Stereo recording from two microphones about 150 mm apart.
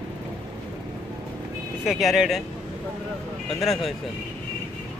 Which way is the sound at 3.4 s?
Centre (ahead or behind).